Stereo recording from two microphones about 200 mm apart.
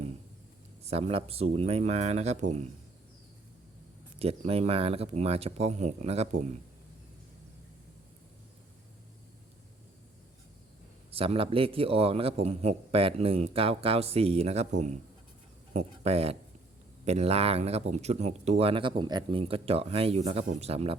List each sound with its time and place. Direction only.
0.9 s speech: 30° right (ahead or behind)
4.2 s speech: 30° right (ahead or behind)
11.1 s a man's voice: 30° right (ahead or behind)